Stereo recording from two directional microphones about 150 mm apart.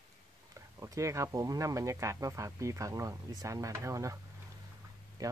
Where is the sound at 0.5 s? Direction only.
20° right (ahead or behind).